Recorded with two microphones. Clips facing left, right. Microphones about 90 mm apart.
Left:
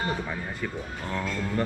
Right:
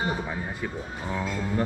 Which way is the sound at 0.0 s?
10° right (ahead or behind).